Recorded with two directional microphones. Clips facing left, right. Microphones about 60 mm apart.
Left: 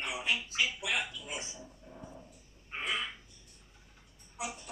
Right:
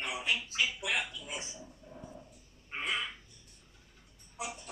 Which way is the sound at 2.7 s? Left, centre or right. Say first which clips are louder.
Even; centre.